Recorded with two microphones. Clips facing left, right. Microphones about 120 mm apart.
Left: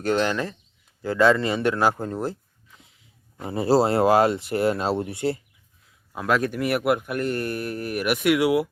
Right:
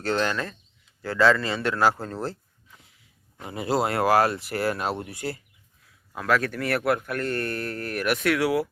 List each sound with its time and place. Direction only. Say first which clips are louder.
0.0 s speech: left 3 dB; 15° left (ahead or behind)
3.5 s speech: left 6 dB; 35° left (ahead or behind); by 8.7 s 15° left (ahead or behind)